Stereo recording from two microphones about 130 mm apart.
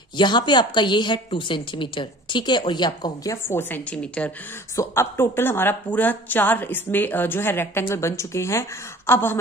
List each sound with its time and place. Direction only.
0.2 s a woman's voice: 35° left (ahead or behind)
3.4 s a woman's voice: 15° left (ahead or behind)